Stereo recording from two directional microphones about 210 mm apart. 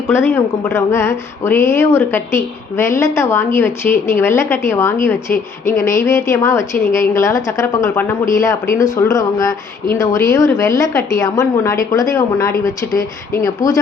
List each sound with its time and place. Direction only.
0.1 s a woman's voice: 10° left (ahead or behind)